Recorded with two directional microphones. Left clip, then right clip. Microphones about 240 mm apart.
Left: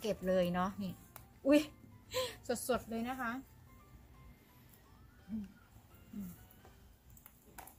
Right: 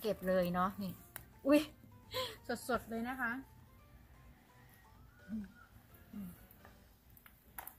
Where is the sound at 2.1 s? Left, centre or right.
Centre.